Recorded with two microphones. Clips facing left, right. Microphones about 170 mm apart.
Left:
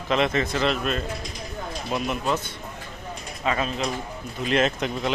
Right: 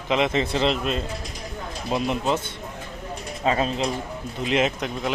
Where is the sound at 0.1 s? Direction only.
20° right (ahead or behind).